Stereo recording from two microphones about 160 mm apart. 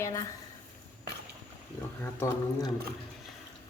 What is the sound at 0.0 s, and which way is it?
Speech, 20° left (ahead or behind).